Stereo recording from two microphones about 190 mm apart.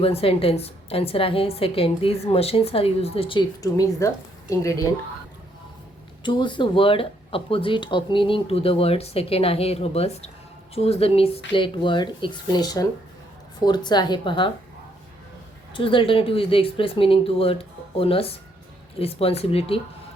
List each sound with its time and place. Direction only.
0.0 s a woman's voice: 30° left (ahead or behind)
6.2 s speech: 25° left (ahead or behind)
15.7 s a woman's voice: 25° left (ahead or behind)